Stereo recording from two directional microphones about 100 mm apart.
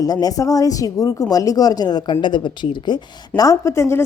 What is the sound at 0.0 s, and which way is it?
A woman's voice, 40° left (ahead or behind).